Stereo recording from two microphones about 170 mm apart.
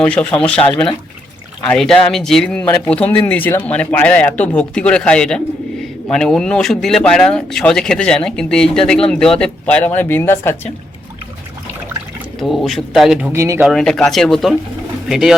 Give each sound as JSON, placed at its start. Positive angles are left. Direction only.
{"t": 0.0, "sound": "speech", "side_deg": 10}
{"t": 12.4, "sound": "speech", "side_deg": 0}
{"t": 13.3, "sound": "speech", "side_deg": -15}
{"t": 13.7, "sound": "speech", "side_deg": 0}